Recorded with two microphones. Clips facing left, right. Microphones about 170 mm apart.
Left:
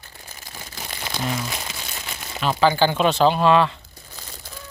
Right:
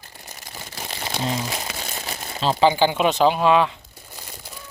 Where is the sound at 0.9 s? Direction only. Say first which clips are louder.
Right 1 dB; 25° right (ahead or behind).